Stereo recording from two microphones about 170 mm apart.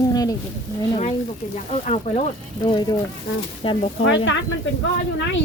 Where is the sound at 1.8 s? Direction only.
40° left (ahead or behind).